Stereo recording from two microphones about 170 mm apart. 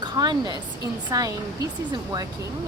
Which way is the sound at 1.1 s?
20° right (ahead or behind).